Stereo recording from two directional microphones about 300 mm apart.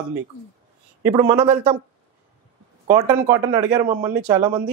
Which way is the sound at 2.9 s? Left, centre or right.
Centre.